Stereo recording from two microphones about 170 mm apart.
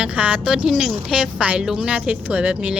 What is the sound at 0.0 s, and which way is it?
A woman's voice, 10° right (ahead or behind).